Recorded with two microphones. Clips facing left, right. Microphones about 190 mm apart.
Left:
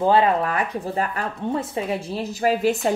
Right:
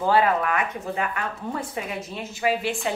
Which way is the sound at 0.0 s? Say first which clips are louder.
Left 3 dB; 25° left (ahead or behind).